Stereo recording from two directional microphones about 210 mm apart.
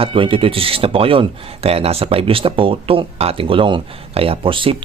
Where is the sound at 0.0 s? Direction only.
25° right (ahead or behind).